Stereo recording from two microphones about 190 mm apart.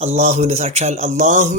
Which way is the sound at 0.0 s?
35° right (ahead or behind).